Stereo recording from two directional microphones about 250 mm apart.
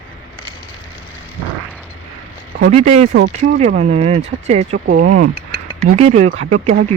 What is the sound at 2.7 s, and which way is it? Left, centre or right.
Speech, right.